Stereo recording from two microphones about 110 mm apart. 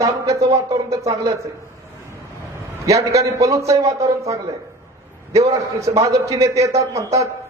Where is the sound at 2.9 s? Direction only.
30° right (ahead or behind).